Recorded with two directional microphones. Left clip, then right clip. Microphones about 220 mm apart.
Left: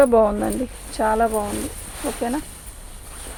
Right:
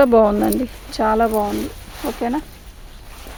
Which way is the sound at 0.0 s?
40° right (ahead or behind).